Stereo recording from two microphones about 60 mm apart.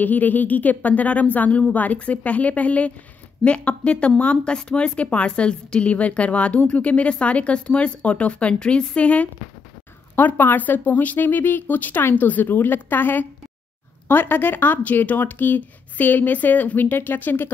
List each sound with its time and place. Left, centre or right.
0.0 s speech: left
10.1 s speech: left